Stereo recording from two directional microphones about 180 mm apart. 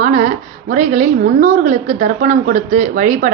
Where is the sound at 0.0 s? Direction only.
45° right (ahead or behind).